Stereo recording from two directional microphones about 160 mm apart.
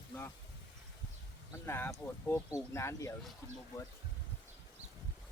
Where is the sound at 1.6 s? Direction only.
15° left (ahead or behind).